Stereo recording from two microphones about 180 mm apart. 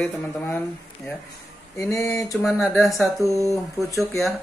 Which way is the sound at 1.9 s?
15° left (ahead or behind).